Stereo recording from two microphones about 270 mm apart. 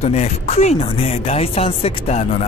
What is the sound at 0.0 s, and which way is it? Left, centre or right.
Speech, left.